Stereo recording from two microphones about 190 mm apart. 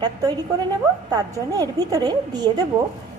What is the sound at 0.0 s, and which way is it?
A woman's voice, 20° right (ahead or behind).